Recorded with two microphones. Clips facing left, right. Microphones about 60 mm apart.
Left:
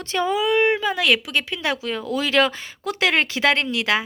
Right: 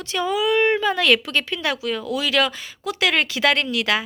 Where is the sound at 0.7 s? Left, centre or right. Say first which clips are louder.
Right 2 dB; centre.